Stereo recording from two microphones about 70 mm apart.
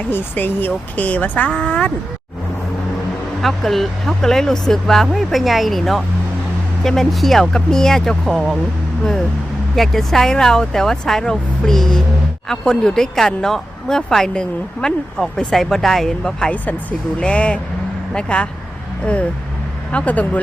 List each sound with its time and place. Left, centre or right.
0.1 s speech: left
3.4 s speech: centre
9.7 s speech: centre
19.9 s speech: centre